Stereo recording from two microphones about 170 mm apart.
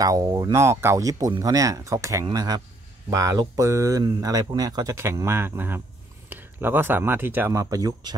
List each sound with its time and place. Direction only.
0.0 s speech: 20° right (ahead or behind)